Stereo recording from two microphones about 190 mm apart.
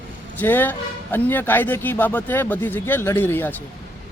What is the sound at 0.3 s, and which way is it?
A man's voice, 10° left (ahead or behind).